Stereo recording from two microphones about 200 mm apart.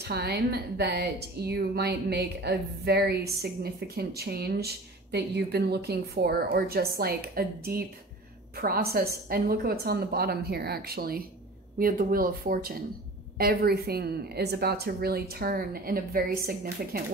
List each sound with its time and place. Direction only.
0.0 s a woman's voice: 55° right (ahead or behind)